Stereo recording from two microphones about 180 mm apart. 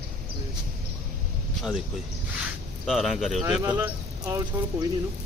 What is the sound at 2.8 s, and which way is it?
Speech, centre (ahead or behind).